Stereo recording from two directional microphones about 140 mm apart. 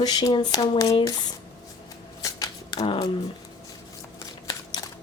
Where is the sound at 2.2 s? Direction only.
25° left (ahead or behind).